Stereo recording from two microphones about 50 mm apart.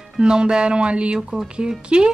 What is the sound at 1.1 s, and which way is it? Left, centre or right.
Speech, centre.